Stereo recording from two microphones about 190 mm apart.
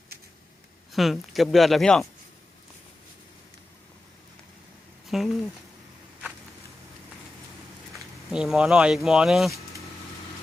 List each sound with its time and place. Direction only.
0.9 s speech: centre (ahead or behind)
5.0 s speech: centre (ahead or behind)
7.9 s speech: centre (ahead or behind)